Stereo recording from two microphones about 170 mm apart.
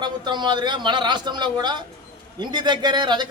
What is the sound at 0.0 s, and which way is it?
A man's voice, 25° right (ahead or behind).